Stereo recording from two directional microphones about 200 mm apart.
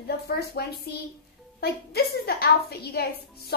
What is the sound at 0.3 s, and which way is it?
A woman's voice, 55° left (ahead or behind).